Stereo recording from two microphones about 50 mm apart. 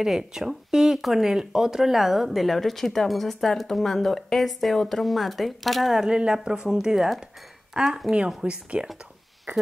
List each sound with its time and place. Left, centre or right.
0.0 s speech: centre
6.0 s speech: centre
6.8 s speech: centre; by 8.8 s right
9.5 s speech: right